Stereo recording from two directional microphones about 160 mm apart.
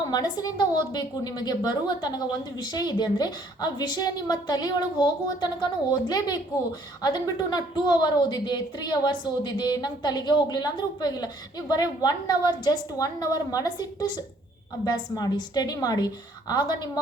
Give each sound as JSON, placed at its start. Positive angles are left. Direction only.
{"t": 0.1, "sound": "a woman's voice", "side_deg": 25}